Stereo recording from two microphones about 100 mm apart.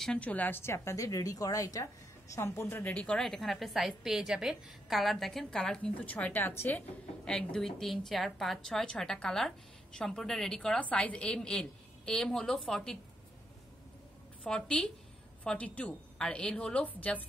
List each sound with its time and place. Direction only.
0.0 s a woman's voice: 10° left (ahead or behind)
7.2 s a woman's voice: 5° left (ahead or behind)
14.4 s a woman's voice: 10° left (ahead or behind)